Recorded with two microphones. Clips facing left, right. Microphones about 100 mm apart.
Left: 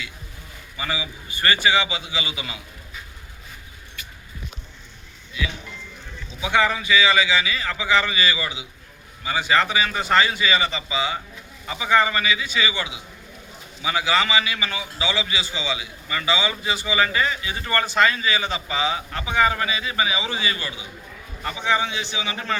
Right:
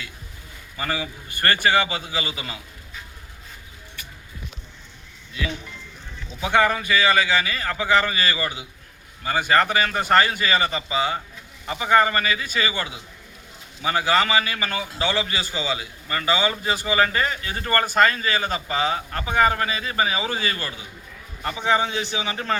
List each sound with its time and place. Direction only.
0.8 s a man's voice: 45° right (ahead or behind)
6.4 s a man's voice: 45° right (ahead or behind)